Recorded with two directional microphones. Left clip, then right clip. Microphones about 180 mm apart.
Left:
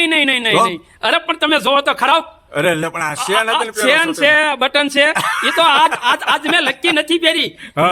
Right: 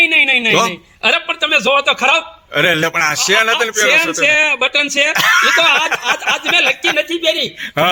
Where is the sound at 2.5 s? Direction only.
5° right (ahead or behind).